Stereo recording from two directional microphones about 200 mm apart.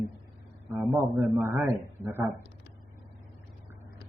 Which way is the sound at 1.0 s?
15° right (ahead or behind).